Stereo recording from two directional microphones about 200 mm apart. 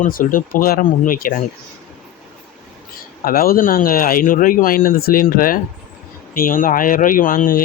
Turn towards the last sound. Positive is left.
turn(degrees=45)  # may be behind; listen again after turning